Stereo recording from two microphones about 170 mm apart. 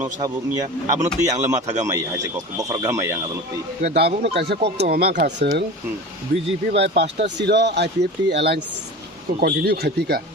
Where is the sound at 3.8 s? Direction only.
75° right (ahead or behind).